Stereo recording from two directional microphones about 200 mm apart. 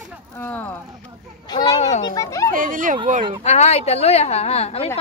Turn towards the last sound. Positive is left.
turn(degrees=30)  # may be behind; listen again after turning